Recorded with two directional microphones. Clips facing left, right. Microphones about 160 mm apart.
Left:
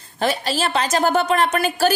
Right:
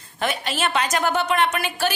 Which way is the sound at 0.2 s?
35° left (ahead or behind).